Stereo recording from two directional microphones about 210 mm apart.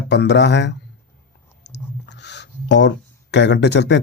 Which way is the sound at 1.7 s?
55° left (ahead or behind).